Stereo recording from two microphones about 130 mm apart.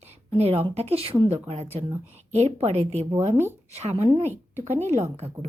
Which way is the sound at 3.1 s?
20° right (ahead or behind).